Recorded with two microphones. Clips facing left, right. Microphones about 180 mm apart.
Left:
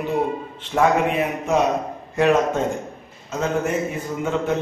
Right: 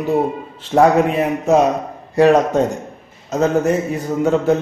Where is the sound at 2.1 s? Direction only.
35° right (ahead or behind).